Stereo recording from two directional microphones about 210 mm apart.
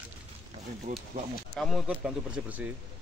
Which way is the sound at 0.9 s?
35° right (ahead or behind).